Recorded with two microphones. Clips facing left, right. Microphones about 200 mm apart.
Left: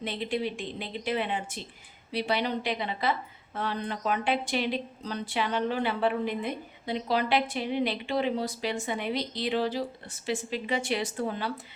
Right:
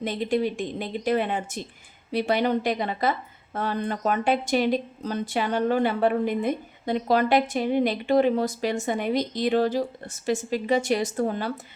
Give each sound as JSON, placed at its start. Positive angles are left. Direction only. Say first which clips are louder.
{"t": 0.0, "sound": "a woman's voice", "louder": "right 6 dB", "side_deg": -45}